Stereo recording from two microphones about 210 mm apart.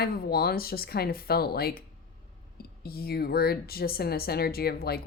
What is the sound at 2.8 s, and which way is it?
Speech, 45° left (ahead or behind).